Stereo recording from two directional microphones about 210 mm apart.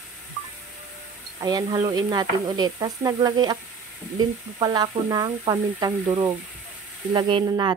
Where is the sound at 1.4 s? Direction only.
20° right (ahead or behind).